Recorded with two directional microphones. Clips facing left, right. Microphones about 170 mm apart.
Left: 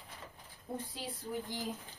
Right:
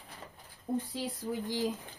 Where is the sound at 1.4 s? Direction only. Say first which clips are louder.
Right 8 dB; 90° right.